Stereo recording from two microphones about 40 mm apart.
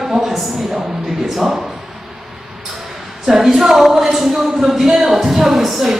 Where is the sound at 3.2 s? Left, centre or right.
Centre.